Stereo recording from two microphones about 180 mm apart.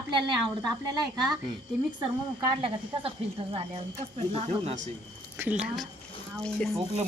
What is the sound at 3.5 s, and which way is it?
A man's voice, 35° right (ahead or behind).